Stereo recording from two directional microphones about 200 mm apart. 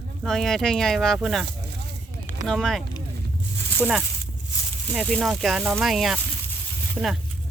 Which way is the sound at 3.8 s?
Centre (ahead or behind).